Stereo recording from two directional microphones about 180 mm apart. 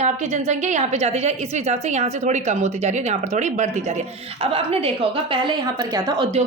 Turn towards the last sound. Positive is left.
turn(degrees=-20)  # may be behind; listen again after turning